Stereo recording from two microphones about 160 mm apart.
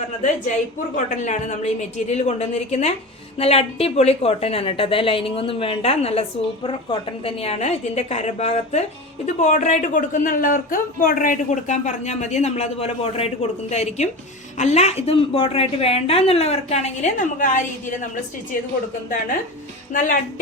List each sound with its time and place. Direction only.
0.2 s a woman's voice: 50° left (ahead or behind)